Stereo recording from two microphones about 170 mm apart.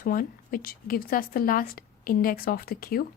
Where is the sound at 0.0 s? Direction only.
55° left (ahead or behind).